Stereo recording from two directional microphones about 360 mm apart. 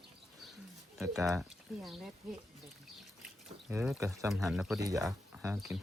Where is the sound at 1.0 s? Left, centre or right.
Centre.